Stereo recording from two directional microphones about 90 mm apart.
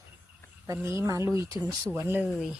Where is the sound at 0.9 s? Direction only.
35° right (ahead or behind).